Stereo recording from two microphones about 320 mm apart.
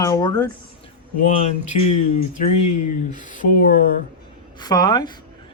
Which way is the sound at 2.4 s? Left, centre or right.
Left.